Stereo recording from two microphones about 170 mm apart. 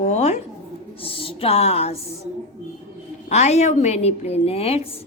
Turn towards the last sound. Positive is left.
turn(degrees=35)  # may be behind; listen again after turning